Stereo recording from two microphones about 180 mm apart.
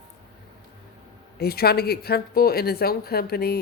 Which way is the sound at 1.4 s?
60° left (ahead or behind).